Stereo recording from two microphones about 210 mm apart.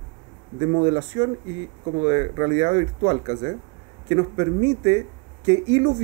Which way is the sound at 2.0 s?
20° right (ahead or behind).